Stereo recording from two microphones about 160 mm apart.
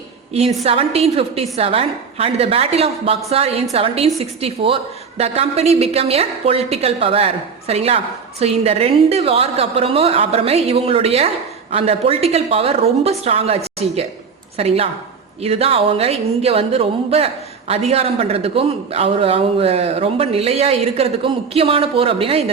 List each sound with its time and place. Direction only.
0.6 s a woman's voice: 40° right (ahead or behind)